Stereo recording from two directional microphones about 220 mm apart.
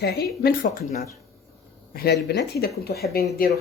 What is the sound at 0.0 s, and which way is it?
Speech, 50° left (ahead or behind).